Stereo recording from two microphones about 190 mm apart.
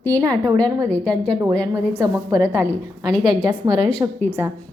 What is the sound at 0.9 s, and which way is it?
Speech, 5° left (ahead or behind).